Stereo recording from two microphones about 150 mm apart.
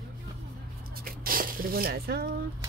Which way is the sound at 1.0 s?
75° right (ahead or behind).